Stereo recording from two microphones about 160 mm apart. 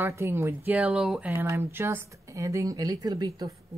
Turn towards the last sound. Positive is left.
turn(degrees=-25)  # may be behind; listen again after turning